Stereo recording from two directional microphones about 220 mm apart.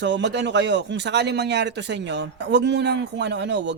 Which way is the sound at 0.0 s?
55° right (ahead or behind).